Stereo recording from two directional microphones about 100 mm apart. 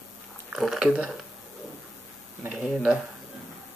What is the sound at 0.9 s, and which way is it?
Speech, 15° right (ahead or behind).